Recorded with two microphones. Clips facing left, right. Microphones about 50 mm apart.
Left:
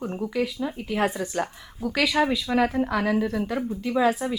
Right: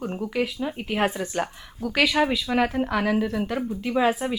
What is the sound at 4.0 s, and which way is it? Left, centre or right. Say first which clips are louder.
Speech: even; right.